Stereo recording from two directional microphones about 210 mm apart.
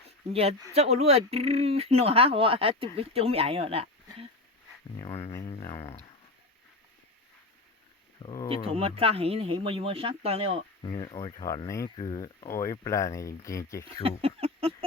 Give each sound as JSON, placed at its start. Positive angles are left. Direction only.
{"t": 0.3, "sound": "speech", "side_deg": -30}
{"t": 4.9, "sound": "speech", "side_deg": 25}
{"t": 5.3, "sound": "a sound", "side_deg": 15}
{"t": 8.2, "sound": "speech", "side_deg": 20}
{"t": 8.4, "sound": "speech", "side_deg": -25}
{"t": 10.8, "sound": "speech", "side_deg": 20}
{"t": 13.8, "sound": "speech", "side_deg": -25}